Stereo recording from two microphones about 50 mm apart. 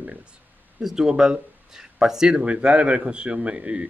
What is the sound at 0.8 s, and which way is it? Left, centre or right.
Speech, centre.